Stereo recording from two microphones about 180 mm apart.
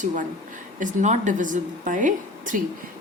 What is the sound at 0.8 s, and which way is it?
A woman's voice, 40° right (ahead or behind).